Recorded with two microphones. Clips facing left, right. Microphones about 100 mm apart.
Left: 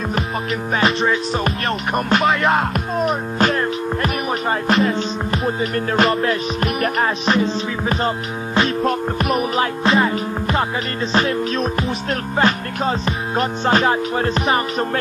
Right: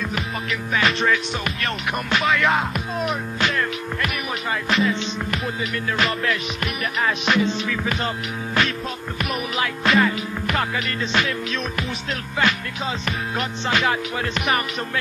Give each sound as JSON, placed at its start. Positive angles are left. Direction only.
{"t": 0.7, "sound": "music", "side_deg": 35}